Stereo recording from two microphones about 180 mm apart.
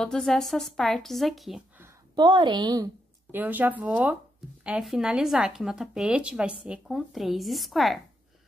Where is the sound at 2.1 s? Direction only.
25° right (ahead or behind).